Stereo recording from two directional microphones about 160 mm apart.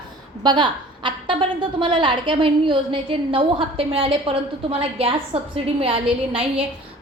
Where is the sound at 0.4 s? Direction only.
30° right (ahead or behind).